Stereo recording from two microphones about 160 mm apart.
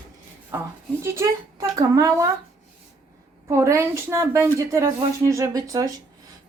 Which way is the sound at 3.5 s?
20° right (ahead or behind).